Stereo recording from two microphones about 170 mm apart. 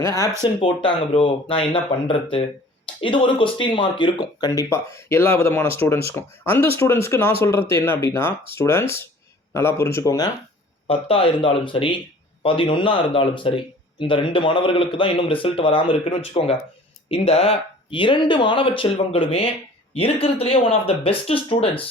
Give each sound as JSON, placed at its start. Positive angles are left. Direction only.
{"t": 0.0, "sound": "speech", "side_deg": 15}
{"t": 0.6, "sound": "speech", "side_deg": 30}
{"t": 10.8, "sound": "speech", "side_deg": 35}